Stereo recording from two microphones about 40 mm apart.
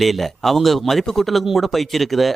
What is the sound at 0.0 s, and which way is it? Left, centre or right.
A woman's voice, centre.